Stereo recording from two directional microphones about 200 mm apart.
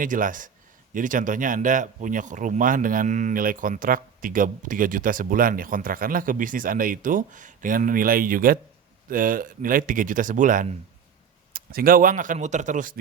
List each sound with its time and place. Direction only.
0.0 s speech: 40° right (ahead or behind)